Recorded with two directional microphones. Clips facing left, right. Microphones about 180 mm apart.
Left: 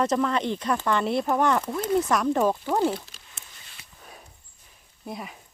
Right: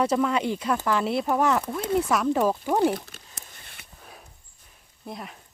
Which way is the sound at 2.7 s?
15° right (ahead or behind).